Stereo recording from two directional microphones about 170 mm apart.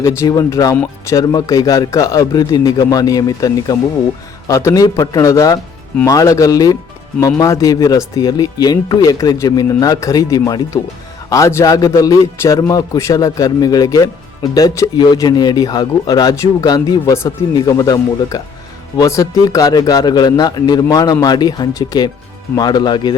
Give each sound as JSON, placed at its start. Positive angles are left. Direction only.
{"t": 0.0, "sound": "a man's voice", "side_deg": 15}